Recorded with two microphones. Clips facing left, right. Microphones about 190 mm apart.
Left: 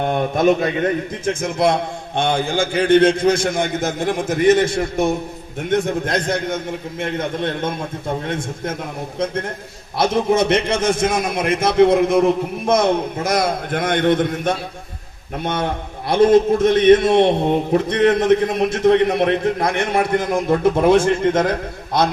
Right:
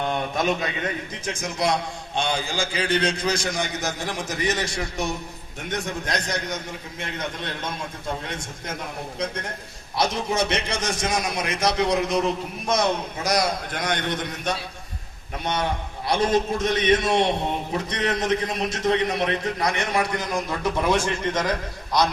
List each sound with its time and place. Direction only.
0.0 s a man's voice: 50° left (ahead or behind)
10.0 s a man's voice: 55° left (ahead or behind)